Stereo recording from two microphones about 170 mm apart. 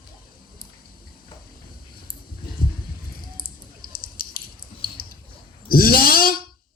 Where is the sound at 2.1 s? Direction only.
55° left (ahead or behind).